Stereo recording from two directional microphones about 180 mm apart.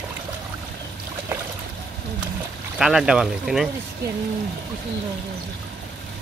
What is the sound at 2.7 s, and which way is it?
Speech, centre (ahead or behind).